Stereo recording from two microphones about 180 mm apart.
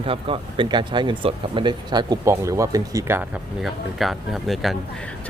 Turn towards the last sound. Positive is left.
turn(degrees=0)  # may be behind; listen again after turning